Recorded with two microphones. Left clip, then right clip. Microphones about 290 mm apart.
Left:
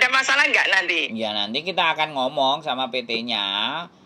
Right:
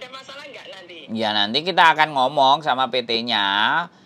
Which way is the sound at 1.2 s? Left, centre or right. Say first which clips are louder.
Right 4 dB; right.